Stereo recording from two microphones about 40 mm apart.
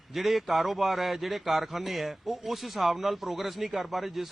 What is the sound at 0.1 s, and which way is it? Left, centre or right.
Speech, centre.